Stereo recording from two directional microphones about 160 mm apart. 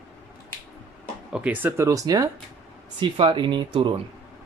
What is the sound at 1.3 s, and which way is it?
Speech, 10° right (ahead or behind).